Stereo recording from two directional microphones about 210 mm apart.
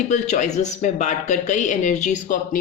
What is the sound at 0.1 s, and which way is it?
Speech, 35° left (ahead or behind).